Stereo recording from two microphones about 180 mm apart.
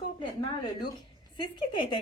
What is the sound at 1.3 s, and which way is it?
Speech, 25° left (ahead or behind).